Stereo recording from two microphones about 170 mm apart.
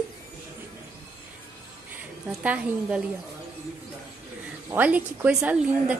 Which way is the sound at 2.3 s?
10° right (ahead or behind).